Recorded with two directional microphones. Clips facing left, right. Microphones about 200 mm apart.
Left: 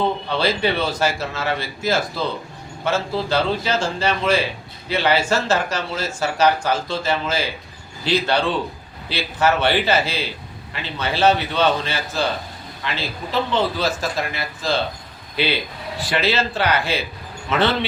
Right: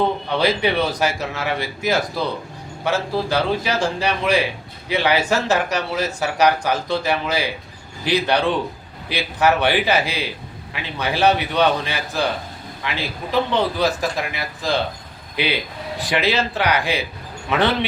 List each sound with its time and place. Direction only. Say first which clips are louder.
0.3 s speech: right 1 dB; 15° right (ahead or behind)